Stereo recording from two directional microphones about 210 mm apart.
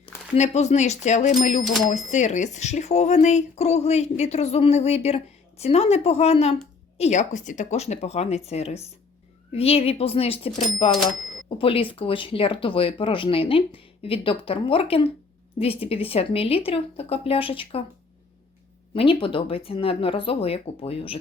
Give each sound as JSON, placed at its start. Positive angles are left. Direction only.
{"t": 0.3, "sound": "speech", "side_deg": 35}
{"t": 18.9, "sound": "speech", "side_deg": 25}